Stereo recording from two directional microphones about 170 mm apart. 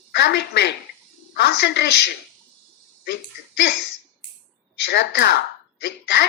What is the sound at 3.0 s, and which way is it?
Speech, 75° left (ahead or behind).